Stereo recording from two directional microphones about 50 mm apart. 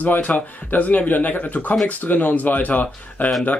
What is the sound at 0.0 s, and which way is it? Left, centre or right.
Speech, left.